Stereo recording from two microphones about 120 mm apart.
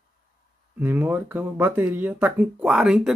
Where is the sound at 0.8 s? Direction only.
15° right (ahead or behind).